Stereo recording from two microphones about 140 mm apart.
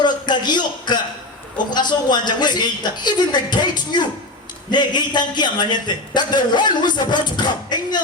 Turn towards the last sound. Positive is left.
turn(degrees=30)  # may be behind; listen again after turning